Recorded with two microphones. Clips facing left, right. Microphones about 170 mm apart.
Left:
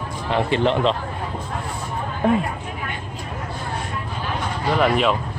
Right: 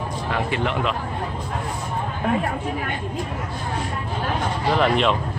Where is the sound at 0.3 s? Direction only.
30° left (ahead or behind).